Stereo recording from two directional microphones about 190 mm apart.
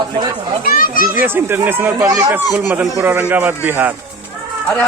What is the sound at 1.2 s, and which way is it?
Speech, 10° right (ahead or behind).